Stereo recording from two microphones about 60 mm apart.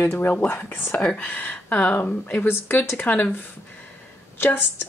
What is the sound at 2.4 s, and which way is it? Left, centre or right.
Speech, left.